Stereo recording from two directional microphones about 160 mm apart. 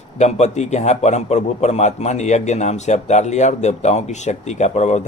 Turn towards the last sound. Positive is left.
turn(degrees=45)  # may be behind; listen again after turning